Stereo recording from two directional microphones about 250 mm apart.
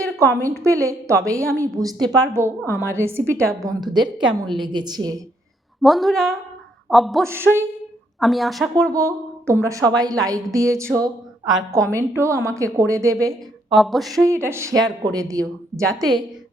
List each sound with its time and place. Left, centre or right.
0.3 s a woman's voice: centre
5.8 s a sound: centre
8.7 s a woman's voice: centre
11.9 s a woman's voice: centre
13.7 s a sound: centre
14.3 s a woman's voice: centre